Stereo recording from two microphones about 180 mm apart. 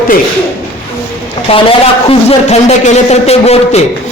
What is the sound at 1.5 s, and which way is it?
A man's voice, 35° left (ahead or behind).